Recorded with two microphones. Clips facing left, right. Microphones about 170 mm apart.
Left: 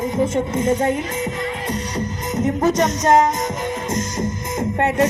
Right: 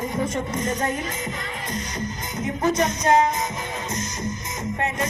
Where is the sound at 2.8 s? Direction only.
40° left (ahead or behind).